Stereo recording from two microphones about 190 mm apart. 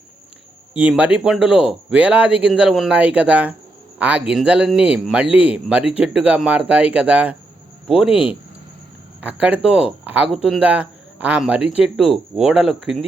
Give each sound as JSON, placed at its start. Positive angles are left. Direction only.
{"t": 0.8, "sound": "a man's voice", "side_deg": -5}